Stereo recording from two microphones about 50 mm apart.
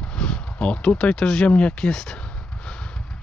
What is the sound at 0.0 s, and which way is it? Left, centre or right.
Speech, centre.